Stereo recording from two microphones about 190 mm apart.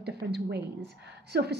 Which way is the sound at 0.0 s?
60° right (ahead or behind).